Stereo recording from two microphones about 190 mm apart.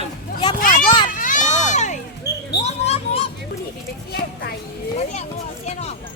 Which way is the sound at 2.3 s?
60° left (ahead or behind).